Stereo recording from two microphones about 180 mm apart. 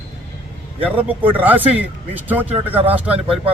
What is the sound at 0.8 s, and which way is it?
Speech, 10° right (ahead or behind).